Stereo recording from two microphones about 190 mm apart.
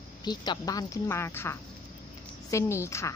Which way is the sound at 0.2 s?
20° left (ahead or behind).